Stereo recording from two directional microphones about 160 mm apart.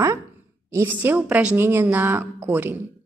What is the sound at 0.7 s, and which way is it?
A woman's voice, 15° right (ahead or behind).